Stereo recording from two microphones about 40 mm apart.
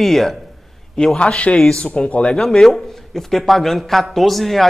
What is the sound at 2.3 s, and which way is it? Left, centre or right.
Speech, centre.